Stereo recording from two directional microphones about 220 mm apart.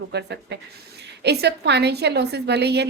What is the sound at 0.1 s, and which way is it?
A woman's voice, 50° right (ahead or behind).